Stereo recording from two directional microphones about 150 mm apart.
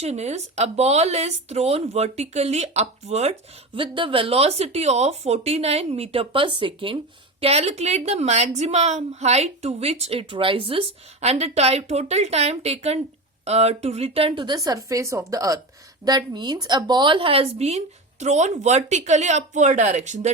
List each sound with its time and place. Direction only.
0.0 s a woman's voice: 45° right (ahead or behind)
3.8 s a woman's voice: 35° right (ahead or behind); by 20.3 s 50° right (ahead or behind)